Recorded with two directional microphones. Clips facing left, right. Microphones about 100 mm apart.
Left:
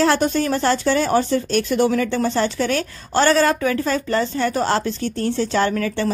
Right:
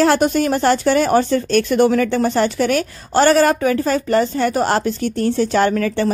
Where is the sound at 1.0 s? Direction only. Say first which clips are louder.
Right 3 dB; 65° right (ahead or behind).